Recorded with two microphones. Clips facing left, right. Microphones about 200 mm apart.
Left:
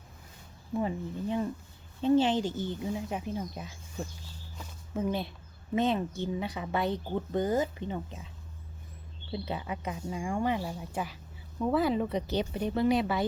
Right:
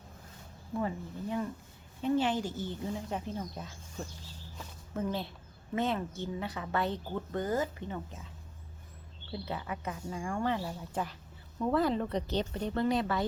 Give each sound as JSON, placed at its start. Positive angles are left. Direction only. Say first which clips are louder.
{"t": 0.8, "sound": "speech", "louder": "left 3 dB", "side_deg": 20}
{"t": 9.3, "sound": "speech", "louder": "left 3 dB", "side_deg": 20}